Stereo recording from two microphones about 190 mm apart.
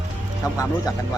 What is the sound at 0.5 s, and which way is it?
Speech, 15° left (ahead or behind).